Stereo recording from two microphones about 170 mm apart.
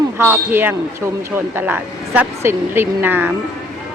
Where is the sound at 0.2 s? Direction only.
10° right (ahead or behind).